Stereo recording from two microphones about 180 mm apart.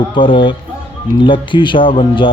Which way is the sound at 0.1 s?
30° left (ahead or behind).